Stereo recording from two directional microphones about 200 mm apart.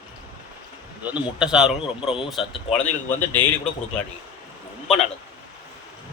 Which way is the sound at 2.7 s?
10° left (ahead or behind).